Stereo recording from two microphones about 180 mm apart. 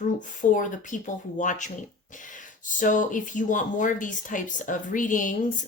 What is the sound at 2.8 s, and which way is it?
Speech, 45° left (ahead or behind).